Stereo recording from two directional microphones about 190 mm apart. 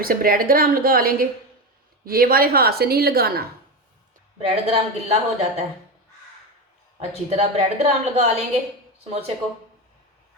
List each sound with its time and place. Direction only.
0.0 s a woman's voice: 50° right (ahead or behind)
4.4 s a woman's voice: 35° right (ahead or behind)
7.3 s a woman's voice: 35° right (ahead or behind)